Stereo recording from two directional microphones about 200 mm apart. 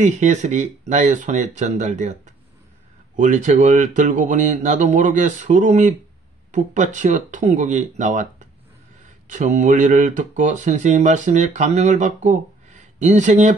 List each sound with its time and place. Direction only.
0.0 s speech: 35° right (ahead or behind)
3.2 s speech: 40° right (ahead or behind)